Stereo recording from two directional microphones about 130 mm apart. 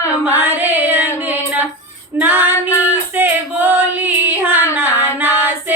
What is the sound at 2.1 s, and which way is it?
Female singing, 15° right (ahead or behind).